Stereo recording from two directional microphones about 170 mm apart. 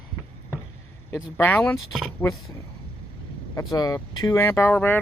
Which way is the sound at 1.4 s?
10° left (ahead or behind).